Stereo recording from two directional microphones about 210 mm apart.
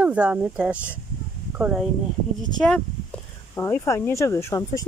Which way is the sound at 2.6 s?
5° left (ahead or behind).